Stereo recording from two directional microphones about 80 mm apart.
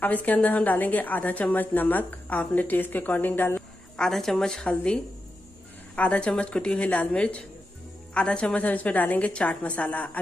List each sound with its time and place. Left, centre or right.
0.0 s a woman's voice: left
3.9 s a woman's voice: centre